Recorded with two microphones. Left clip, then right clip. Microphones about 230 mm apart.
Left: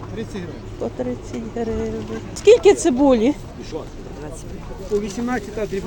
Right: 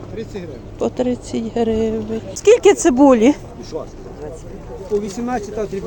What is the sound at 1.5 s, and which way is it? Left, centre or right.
Speech, right.